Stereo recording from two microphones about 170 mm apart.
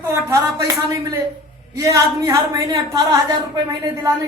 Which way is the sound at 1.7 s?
20° right (ahead or behind).